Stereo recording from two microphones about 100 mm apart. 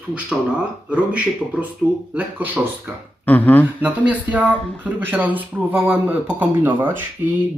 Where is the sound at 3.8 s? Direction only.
15° right (ahead or behind).